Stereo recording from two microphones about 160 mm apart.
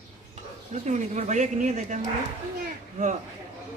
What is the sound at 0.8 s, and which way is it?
A man's voice, 50° right (ahead or behind).